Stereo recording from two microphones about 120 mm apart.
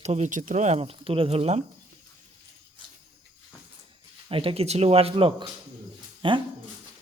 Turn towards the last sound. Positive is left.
turn(degrees=-45)  # may be behind; listen again after turning